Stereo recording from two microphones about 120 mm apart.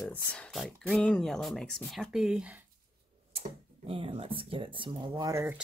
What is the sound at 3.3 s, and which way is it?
Speech, 50° right (ahead or behind).